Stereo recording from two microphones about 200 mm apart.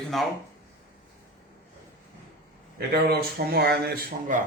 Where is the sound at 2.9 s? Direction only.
50° right (ahead or behind).